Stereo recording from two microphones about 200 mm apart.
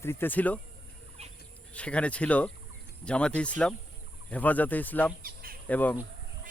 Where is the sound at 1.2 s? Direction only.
30° right (ahead or behind).